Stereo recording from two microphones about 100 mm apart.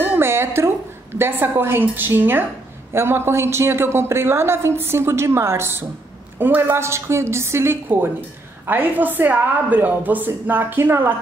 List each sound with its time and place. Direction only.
0.0 s music: 20° right (ahead or behind)
1.1 s a woman's voice: 25° right (ahead or behind)